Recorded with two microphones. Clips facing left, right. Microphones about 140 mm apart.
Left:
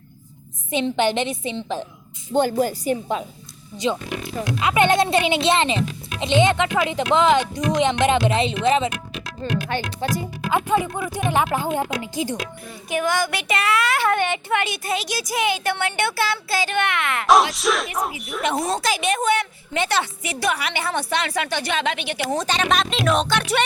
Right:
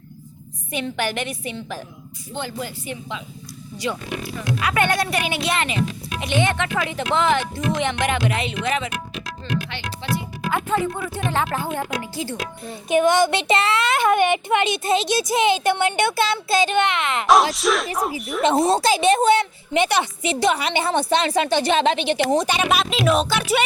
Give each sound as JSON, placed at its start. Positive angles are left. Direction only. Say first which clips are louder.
{"t": 0.7, "sound": "a child's voice", "louder": "left 5 dB", "side_deg": 25}
{"t": 2.3, "sound": "speech", "louder": "left 10 dB", "side_deg": 45}
{"t": 4.6, "sound": "a child's voice", "louder": "left 4 dB", "side_deg": 20}
{"t": 9.4, "sound": "speech", "louder": "left 4 dB", "side_deg": 45}
{"t": 10.5, "sound": "speech", "louder": "left 2 dB", "side_deg": 15}
{"t": 12.6, "sound": "a woman's voice", "louder": "right 7 dB", "side_deg": -20}
{"t": 17.2, "sound": "a sound", "louder": "even", "side_deg": 0}
{"t": 18.4, "sound": "a woman's voice", "louder": "right 5 dB", "side_deg": -25}